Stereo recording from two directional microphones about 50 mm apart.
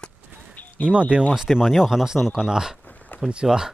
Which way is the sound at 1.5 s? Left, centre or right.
Centre.